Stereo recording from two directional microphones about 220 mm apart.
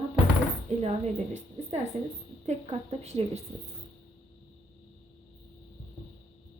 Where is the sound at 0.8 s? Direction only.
30° right (ahead or behind).